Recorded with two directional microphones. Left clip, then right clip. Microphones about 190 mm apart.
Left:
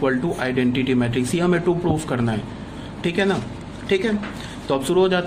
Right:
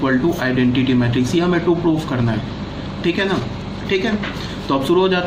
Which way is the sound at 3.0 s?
50° left (ahead or behind).